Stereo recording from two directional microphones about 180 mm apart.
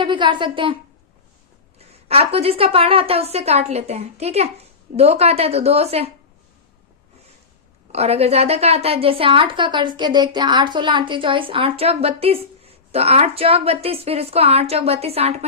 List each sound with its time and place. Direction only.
0.0 s a woman's voice: 25° right (ahead or behind)
2.0 s a woman's voice: 35° right (ahead or behind)
7.9 s a woman's voice: 35° right (ahead or behind)